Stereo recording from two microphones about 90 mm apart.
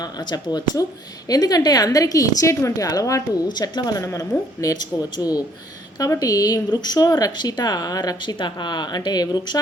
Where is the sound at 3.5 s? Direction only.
50° left (ahead or behind).